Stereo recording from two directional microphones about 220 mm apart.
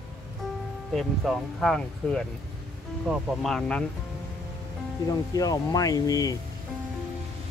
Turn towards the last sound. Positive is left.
turn(degrees=15)  # may be behind; listen again after turning